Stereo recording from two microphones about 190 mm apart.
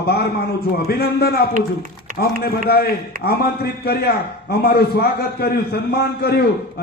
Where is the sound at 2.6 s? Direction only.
55° left (ahead or behind).